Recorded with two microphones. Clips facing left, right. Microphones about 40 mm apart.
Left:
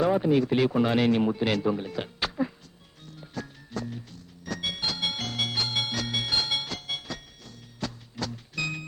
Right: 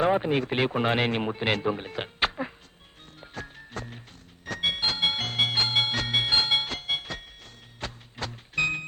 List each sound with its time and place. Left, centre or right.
0.0 s speech: right
3.2 s music: right